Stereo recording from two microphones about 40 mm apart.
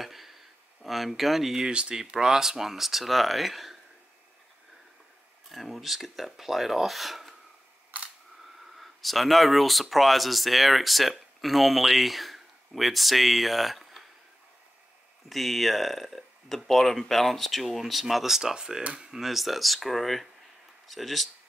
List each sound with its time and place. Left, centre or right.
0.0 s speech: centre
1.7 s speech: right
2.1 s speech: centre
5.5 s speech: centre
8.7 s speech: centre
15.2 s speech: centre